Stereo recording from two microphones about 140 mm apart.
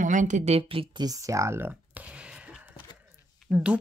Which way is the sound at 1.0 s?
25° right (ahead or behind).